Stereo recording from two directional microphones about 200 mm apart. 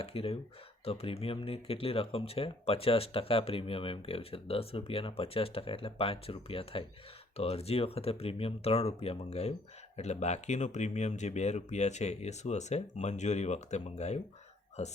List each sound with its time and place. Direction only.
0.0 s speech: 30° left (ahead or behind)